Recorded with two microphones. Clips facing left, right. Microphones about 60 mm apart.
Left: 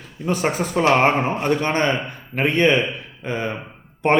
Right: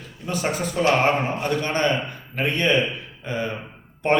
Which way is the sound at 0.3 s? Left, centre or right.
Left.